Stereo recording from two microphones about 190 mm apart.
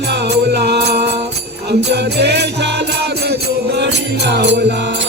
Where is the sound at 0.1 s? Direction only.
60° right (ahead or behind).